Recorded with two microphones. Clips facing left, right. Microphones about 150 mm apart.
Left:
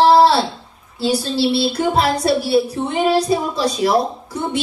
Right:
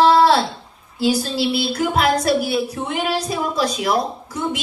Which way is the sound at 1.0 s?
30° left (ahead or behind).